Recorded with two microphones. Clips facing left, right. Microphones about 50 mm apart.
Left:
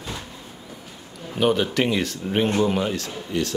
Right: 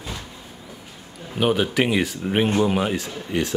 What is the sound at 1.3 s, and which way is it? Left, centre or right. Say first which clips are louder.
Speech: even; centre.